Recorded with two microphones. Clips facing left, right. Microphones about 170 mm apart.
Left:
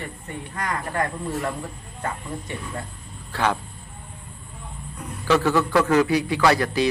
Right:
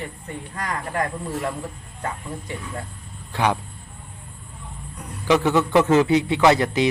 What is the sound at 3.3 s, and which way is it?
Speech, 15° right (ahead or behind).